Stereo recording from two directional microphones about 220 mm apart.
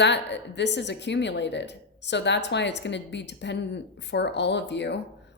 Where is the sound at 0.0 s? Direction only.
50° left (ahead or behind).